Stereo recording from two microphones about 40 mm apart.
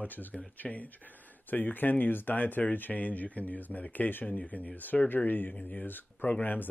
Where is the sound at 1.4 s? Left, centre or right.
Left.